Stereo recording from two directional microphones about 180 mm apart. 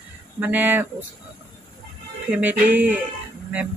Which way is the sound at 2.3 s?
10° right (ahead or behind).